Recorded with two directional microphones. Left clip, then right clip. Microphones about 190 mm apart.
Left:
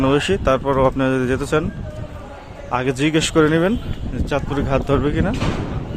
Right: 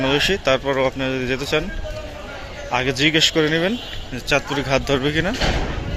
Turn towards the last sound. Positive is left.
turn(degrees=15)  # may be behind; listen again after turning